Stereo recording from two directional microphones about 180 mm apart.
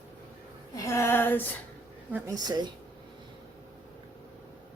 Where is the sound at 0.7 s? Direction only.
15° left (ahead or behind).